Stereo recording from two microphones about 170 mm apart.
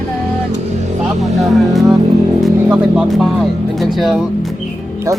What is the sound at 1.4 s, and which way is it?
Speech, centre (ahead or behind).